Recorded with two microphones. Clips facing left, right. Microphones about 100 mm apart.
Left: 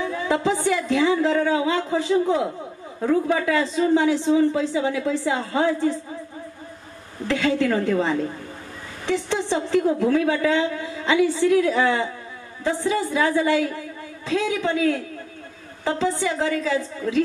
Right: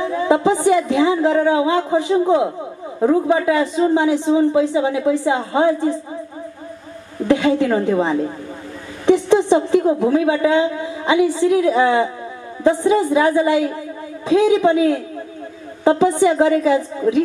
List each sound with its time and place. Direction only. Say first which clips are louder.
0.0 s a woman's voice: right 6 dB; 20° right (ahead or behind)
7.2 s a woman's voice: right 6 dB; 20° right (ahead or behind)